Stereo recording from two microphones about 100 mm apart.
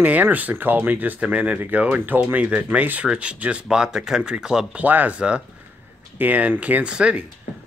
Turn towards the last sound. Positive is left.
turn(degrees=-10)  # may be behind; listen again after turning